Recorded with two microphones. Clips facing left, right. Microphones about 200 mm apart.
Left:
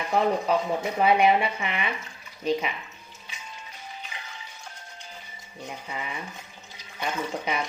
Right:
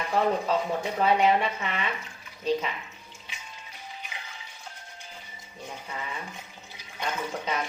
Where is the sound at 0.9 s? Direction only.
15° left (ahead or behind).